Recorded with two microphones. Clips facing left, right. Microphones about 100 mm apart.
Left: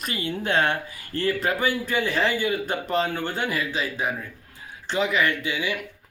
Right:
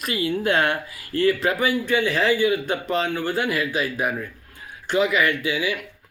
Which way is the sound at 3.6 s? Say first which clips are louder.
Right 3 dB; 10° right (ahead or behind).